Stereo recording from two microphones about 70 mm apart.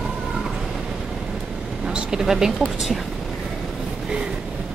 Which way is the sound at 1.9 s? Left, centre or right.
Centre.